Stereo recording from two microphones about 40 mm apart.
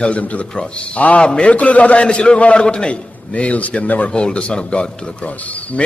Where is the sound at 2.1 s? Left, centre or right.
Left.